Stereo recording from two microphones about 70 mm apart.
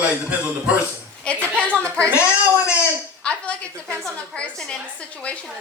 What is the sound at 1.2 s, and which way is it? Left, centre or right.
Speech, centre.